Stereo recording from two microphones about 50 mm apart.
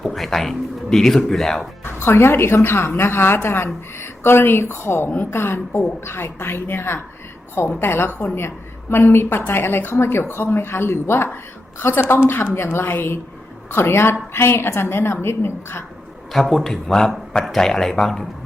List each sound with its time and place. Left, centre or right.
0.0 s speech: centre
1.8 s a woman's voice: left
5.3 s a woman's voice: left
13.7 s a woman's voice: left
16.3 s speech: centre